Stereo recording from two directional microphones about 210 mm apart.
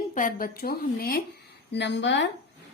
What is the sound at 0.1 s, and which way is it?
Speech, 40° left (ahead or behind).